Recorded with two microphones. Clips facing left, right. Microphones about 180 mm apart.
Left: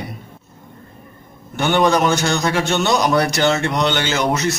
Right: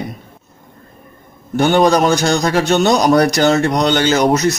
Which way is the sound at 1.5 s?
40° right (ahead or behind).